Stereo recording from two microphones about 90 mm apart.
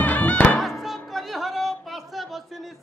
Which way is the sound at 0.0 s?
15° left (ahead or behind).